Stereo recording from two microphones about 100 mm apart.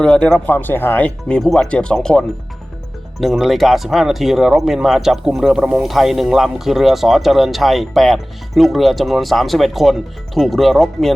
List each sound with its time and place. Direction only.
0.0 s speech: 10° left (ahead or behind)